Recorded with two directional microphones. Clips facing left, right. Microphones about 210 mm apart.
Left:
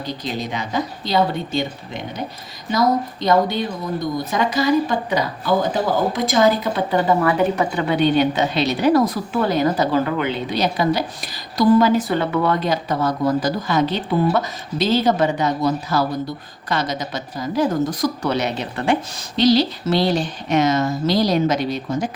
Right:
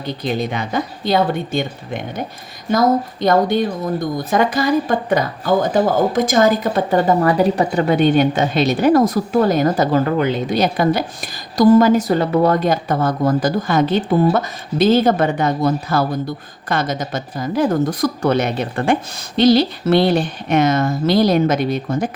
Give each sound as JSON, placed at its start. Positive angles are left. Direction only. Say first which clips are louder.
{"t": 0.0, "sound": "speech", "louder": "right 5 dB", "side_deg": -55}